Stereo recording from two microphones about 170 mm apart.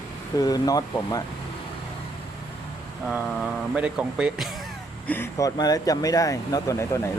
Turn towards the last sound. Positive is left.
turn(degrees=15)  # may be behind; listen again after turning